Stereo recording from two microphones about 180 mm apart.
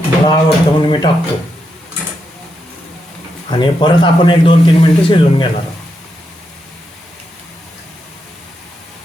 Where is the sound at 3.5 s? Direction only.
25° left (ahead or behind).